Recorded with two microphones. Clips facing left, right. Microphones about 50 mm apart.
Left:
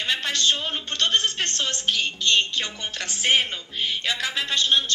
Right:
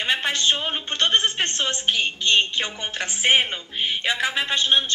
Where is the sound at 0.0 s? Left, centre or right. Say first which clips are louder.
Right 2 dB; right.